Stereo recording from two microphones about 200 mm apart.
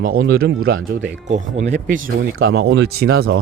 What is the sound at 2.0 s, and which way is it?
Speech, 75° right (ahead or behind).